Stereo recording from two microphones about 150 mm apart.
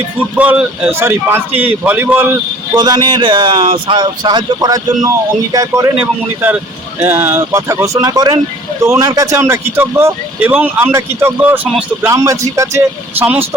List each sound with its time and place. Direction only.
0.3 s speech: 10° right (ahead or behind)
2.7 s speech: 30° right (ahead or behind)
6.0 s speech: 10° right (ahead or behind)